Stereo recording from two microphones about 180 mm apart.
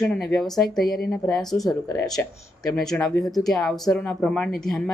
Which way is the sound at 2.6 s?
5° left (ahead or behind).